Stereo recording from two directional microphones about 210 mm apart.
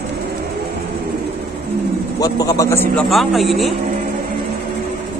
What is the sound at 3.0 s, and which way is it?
Speech, centre (ahead or behind).